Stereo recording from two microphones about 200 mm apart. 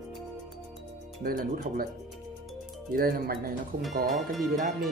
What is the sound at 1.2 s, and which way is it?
Speech, 45° right (ahead or behind).